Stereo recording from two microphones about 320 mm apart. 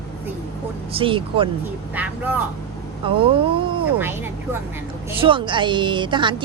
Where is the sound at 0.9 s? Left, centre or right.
Centre.